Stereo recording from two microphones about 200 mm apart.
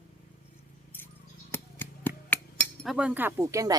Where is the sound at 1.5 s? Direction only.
10° left (ahead or behind).